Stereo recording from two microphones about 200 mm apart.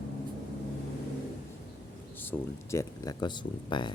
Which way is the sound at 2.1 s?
10° left (ahead or behind).